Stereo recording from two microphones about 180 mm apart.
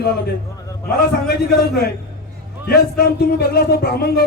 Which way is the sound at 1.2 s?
60° left (ahead or behind).